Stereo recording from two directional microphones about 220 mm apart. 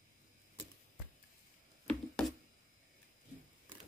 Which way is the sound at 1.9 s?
5° left (ahead or behind).